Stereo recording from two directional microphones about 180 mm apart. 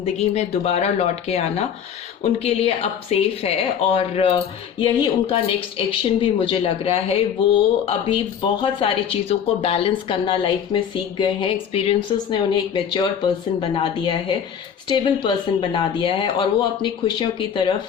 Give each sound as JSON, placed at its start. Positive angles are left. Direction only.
{"t": 0.0, "sound": "speech", "side_deg": 35}